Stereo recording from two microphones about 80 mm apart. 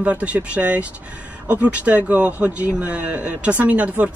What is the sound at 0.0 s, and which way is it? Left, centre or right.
Speech, centre.